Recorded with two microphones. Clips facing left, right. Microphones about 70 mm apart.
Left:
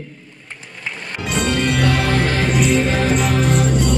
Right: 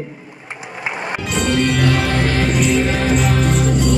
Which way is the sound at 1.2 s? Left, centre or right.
Centre.